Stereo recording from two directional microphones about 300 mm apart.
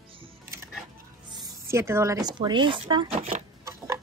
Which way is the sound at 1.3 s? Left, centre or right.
Centre.